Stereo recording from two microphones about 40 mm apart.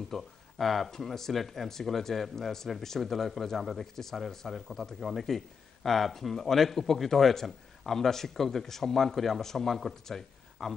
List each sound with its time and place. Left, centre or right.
0.1 s speech: centre